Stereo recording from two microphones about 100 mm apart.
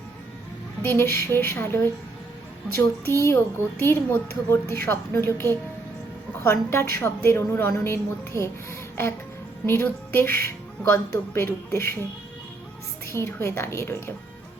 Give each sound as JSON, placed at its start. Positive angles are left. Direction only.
{"t": 0.8, "sound": "a woman's voice", "side_deg": 25}
{"t": 3.2, "sound": "a woman's voice", "side_deg": 25}
{"t": 9.6, "sound": "a woman's voice", "side_deg": 25}
{"t": 13.1, "sound": "a woman's voice", "side_deg": 25}